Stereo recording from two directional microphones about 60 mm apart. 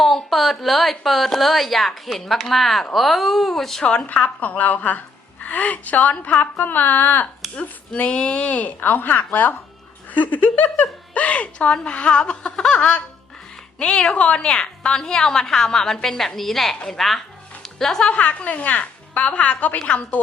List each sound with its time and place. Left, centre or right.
0.0 s a woman's voice: centre
3.8 s a woman's voice: left
17.6 s music: centre
18.1 s a woman's voice: left